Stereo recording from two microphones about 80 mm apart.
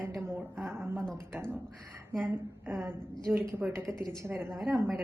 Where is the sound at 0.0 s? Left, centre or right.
Right.